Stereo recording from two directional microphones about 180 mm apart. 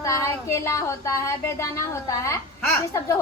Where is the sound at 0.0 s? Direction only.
15° left (ahead or behind).